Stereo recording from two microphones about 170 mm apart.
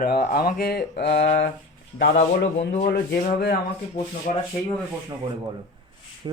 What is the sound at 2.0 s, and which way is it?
Speech, 90° left.